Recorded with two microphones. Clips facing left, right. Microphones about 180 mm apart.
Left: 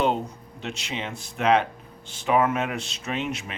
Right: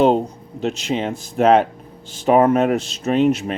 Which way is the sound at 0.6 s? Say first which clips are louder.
Right 11 dB; 40° right (ahead or behind).